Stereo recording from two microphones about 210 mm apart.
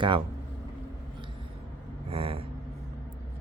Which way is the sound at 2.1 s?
25° right (ahead or behind).